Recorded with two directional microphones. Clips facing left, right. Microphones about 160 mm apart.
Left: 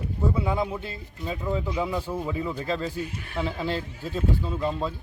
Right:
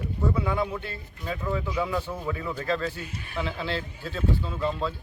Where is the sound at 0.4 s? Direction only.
20° left (ahead or behind).